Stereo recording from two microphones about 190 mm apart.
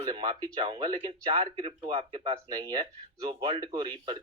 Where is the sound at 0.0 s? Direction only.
20° right (ahead or behind).